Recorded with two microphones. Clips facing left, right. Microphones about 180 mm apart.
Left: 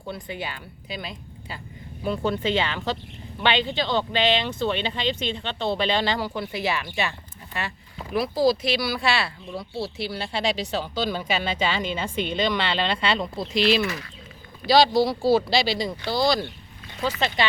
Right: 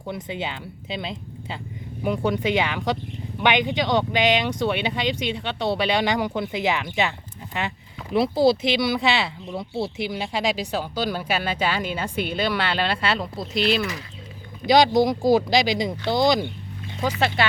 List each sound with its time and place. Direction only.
0.1 s speech: 20° right (ahead or behind)
2.0 s speech: 15° right (ahead or behind)
8.1 s speech: 25° right (ahead or behind); by 13.8 s centre (ahead or behind)
14.6 s speech: 20° right (ahead or behind)